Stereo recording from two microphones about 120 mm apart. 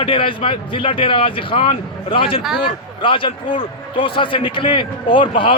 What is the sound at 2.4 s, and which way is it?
Speech, 5° right (ahead or behind).